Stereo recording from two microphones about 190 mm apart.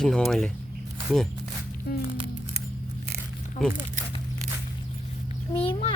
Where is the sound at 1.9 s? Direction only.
55° left (ahead or behind).